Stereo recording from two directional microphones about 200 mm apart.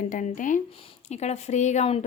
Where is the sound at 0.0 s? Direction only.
40° left (ahead or behind).